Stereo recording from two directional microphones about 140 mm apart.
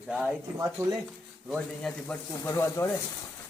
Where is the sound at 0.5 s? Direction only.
25° right (ahead or behind).